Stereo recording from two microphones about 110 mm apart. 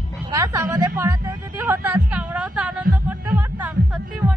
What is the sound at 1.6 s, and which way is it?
Speech, 15° right (ahead or behind).